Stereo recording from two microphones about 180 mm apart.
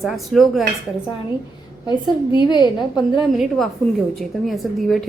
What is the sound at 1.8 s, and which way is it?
Speech, 25° left (ahead or behind).